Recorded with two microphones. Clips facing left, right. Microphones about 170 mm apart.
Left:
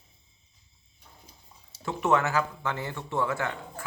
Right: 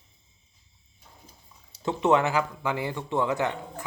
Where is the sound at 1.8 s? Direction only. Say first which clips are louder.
Right 3 dB; 20° right (ahead or behind).